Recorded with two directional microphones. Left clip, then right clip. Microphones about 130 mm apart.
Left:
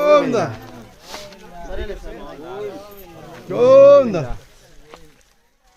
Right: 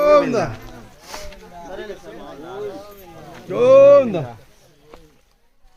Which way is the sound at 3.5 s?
20° right (ahead or behind).